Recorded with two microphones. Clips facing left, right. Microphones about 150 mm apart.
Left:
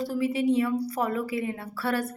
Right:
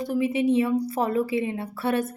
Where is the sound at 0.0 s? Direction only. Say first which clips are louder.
Right 2 dB; 20° right (ahead or behind).